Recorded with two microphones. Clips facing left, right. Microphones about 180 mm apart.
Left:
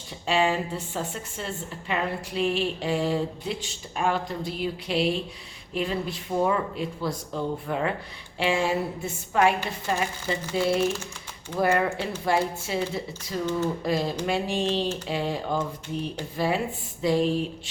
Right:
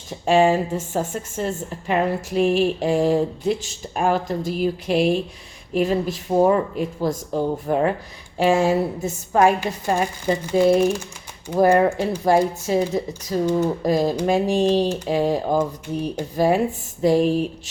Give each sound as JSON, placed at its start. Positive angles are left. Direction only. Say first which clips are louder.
{"t": 0.1, "sound": "a woman's voice", "louder": "right 8 dB", "side_deg": -45}